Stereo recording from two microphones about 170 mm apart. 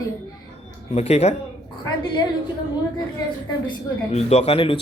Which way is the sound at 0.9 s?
40° left (ahead or behind).